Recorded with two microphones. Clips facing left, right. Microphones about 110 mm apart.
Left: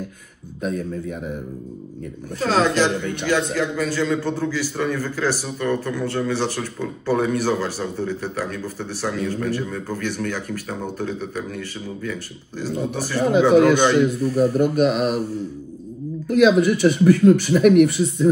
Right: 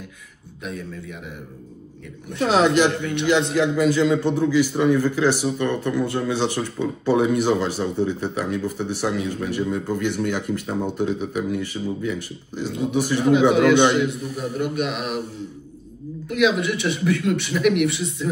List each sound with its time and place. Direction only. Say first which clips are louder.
0.6 s speech: left 7 dB; 40° left (ahead or behind)
2.4 s a man's voice: right 1 dB; 20° right (ahead or behind)
13.2 s speech: left 3 dB; 40° left (ahead or behind)
16.3 s speech: left 5 dB; 40° left (ahead or behind)